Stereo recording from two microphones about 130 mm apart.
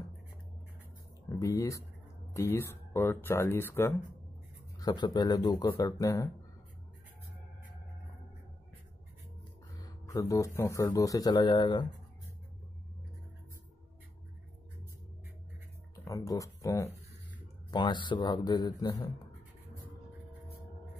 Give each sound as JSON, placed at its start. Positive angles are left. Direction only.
{"t": 1.3, "sound": "speech", "side_deg": 25}
{"t": 4.7, "sound": "speech", "side_deg": 30}
{"t": 9.8, "sound": "speech", "side_deg": 25}
{"t": 16.0, "sound": "speech", "side_deg": 25}
{"t": 17.6, "sound": "speech", "side_deg": 35}